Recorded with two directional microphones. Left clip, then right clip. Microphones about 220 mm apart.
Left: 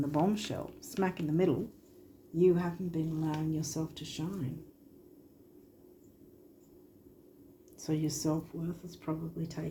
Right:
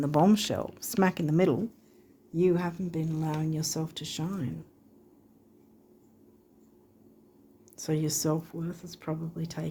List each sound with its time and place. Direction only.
0.0 s speech: 50° right (ahead or behind)
7.8 s speech: 45° right (ahead or behind)